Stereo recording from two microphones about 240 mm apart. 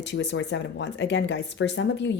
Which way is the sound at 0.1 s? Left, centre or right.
Left.